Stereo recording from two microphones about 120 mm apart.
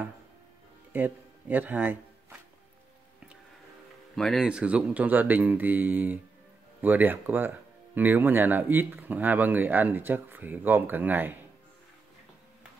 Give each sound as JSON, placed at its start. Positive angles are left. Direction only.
{"t": 0.9, "sound": "speech", "side_deg": -15}
{"t": 4.1, "sound": "speech", "side_deg": 0}
{"t": 4.5, "sound": "speech", "side_deg": -10}